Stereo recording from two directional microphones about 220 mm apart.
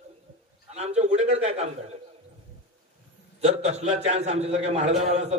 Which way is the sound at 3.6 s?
30° right (ahead or behind).